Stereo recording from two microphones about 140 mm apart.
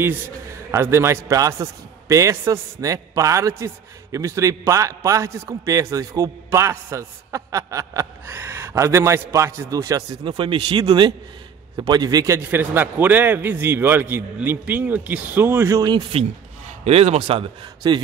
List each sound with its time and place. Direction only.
0.7 s a man's voice: 20° right (ahead or behind)
10.2 s a man's voice: 35° right (ahead or behind)
12.4 s a man's voice: 15° right (ahead or behind); by 16.2 s 30° right (ahead or behind)
16.8 s speech: 50° right (ahead or behind)